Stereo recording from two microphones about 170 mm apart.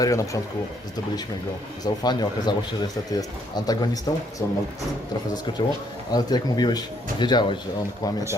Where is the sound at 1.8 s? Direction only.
25° left (ahead or behind).